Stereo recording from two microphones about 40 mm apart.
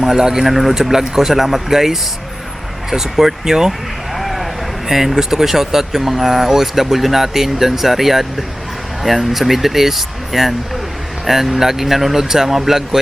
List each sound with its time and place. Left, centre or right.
0.0 s speech: centre
4.1 s vehicle: centre
4.9 s speech: centre